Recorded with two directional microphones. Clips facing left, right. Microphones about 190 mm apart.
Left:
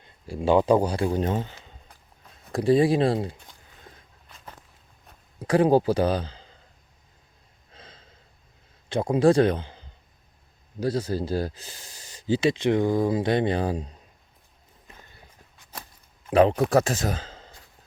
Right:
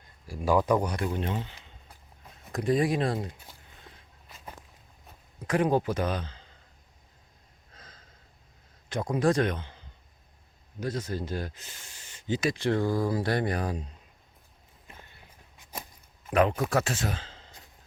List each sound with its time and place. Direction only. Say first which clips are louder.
0.3 s speech: left 5 dB; 25° left (ahead or behind); by 1.5 s 45° left (ahead or behind)
2.5 s speech: left 6 dB; 30° left (ahead or behind)
4.3 s a sound: right 1 dB; 5° right (ahead or behind)
5.4 s speech: left 6 dB; 30° left (ahead or behind)
7.7 s gasp: left 5 dB; 25° left (ahead or behind)
8.9 s speech: left 6 dB; 30° left (ahead or behind)
16.3 s speech: left 6 dB; 30° left (ahead or behind)